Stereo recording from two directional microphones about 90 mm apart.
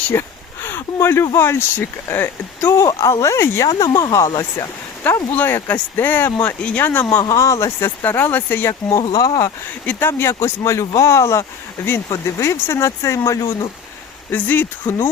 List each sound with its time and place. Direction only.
0.1 s speech: 25° left (ahead or behind)
5.0 s speech: 20° left (ahead or behind)
7.2 s speech: 40° left (ahead or behind)
9.1 s speech: 45° left (ahead or behind)
9.8 s speech: 20° left (ahead or behind); by 13.7 s 35° left (ahead or behind)
14.3 s speech: 20° left (ahead or behind)